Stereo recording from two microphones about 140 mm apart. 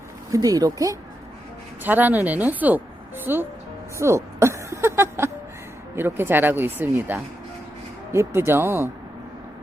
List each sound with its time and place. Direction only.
0.3 s speech: 25° right (ahead or behind)
1.8 s speech: 15° right (ahead or behind)